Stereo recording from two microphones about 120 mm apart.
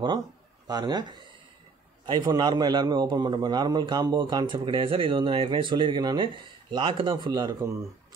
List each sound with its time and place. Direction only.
0.7 s a man's voice: 35° right (ahead or behind)